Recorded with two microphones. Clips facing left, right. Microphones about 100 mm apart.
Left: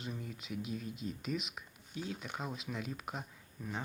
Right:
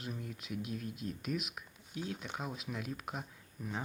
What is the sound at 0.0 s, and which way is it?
Speech, centre (ahead or behind).